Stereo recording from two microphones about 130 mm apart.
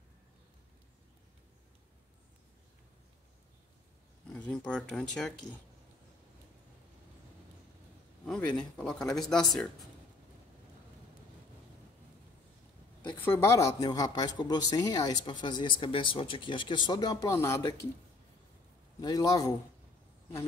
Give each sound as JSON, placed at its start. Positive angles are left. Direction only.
{"t": 4.3, "sound": "speech", "side_deg": 5}
{"t": 8.3, "sound": "speech", "side_deg": 5}
{"t": 13.2, "sound": "speech", "side_deg": 20}
{"t": 18.9, "sound": "a man's voice", "side_deg": 30}